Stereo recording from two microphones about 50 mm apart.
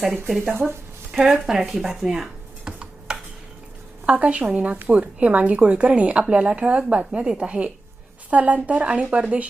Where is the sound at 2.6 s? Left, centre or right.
Centre.